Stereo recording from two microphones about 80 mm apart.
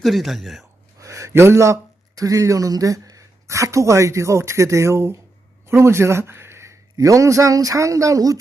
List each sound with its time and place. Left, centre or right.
0.0 s speech: centre
0.9 s a man's voice: right